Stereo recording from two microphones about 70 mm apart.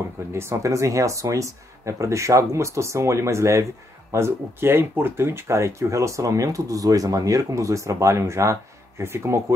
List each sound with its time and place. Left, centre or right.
0.3 s speech: right